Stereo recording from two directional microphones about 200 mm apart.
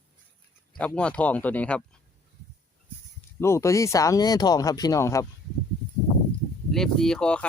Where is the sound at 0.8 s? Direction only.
5° left (ahead or behind).